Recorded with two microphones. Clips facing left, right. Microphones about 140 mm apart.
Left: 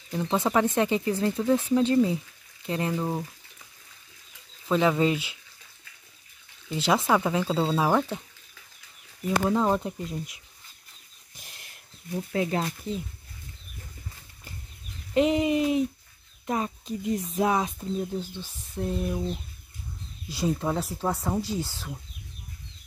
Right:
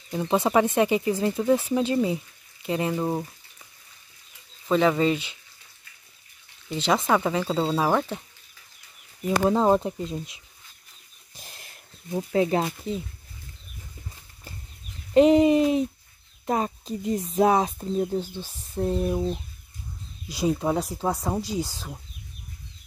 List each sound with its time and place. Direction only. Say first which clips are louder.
0.1 s speech: right 3 dB; 10° right (ahead or behind)
4.6 s speech: right 2 dB; centre (ahead or behind)
6.7 s speech: right 1 dB; 5° left (ahead or behind)
9.4 s speech: right 4 dB; 30° right (ahead or behind)
11.3 s a sound: right 4 dB; 35° right (ahead or behind)
12.1 s speech: right 5 dB; 30° right (ahead or behind)
15.1 s speech: right 6 dB; 35° right (ahead or behind)
20.2 s speech: right 3 dB; 15° right (ahead or behind)